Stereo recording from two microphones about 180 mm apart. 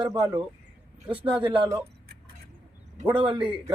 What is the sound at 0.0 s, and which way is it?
Speech, 20° right (ahead or behind).